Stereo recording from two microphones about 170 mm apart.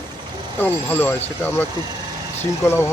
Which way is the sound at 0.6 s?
10° left (ahead or behind).